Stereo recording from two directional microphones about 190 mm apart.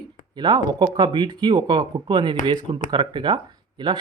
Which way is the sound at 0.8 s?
25° right (ahead or behind).